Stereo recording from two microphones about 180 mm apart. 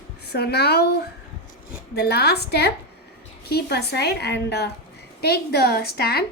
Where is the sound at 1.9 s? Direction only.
65° left (ahead or behind).